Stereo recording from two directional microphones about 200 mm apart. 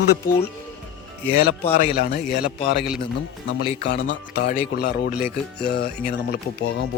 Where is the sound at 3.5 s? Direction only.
65° left (ahead or behind).